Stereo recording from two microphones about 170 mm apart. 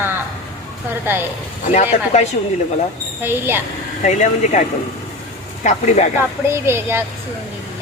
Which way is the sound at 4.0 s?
45° left (ahead or behind).